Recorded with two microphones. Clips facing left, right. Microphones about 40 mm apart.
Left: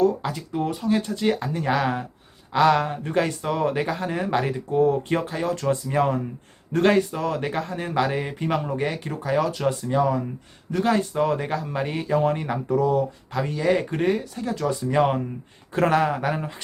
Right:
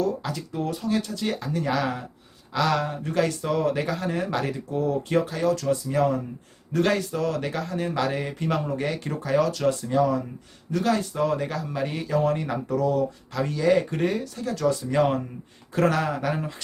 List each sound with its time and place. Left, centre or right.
0.0 s speech: left
9.5 s speech: left
10.7 s speech: left